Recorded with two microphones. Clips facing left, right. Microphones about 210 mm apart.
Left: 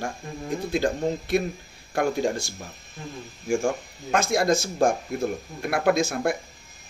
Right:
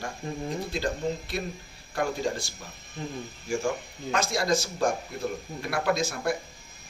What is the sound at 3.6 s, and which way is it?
Speech, 50° left (ahead or behind).